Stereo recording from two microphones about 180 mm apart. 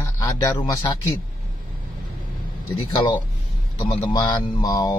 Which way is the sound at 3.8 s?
20° left (ahead or behind).